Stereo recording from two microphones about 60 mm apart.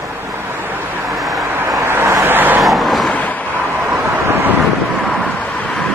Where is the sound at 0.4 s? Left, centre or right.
Right.